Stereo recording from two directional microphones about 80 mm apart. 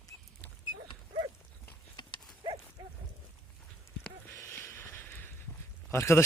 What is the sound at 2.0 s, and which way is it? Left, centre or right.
Dog, left.